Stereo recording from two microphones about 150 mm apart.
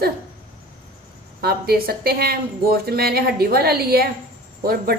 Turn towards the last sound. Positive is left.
turn(degrees=-90)